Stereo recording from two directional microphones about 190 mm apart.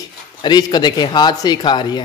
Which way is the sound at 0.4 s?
20° left (ahead or behind).